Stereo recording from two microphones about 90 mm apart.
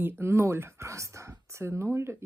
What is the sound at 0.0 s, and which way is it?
Speech, 25° right (ahead or behind).